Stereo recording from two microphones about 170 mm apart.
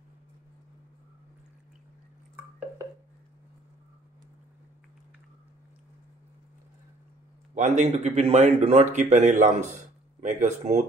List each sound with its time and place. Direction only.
7.5 s speech: 45° right (ahead or behind)